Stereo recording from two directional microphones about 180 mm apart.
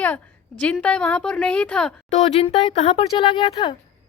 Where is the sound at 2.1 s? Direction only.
35° left (ahead or behind).